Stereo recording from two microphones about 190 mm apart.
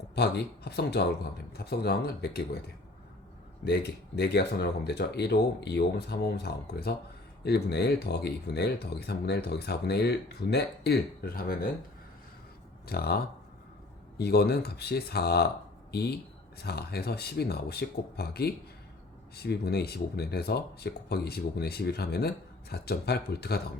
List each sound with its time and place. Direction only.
0.2 s speech: 60° left (ahead or behind)
12.9 s speech: 55° left (ahead or behind)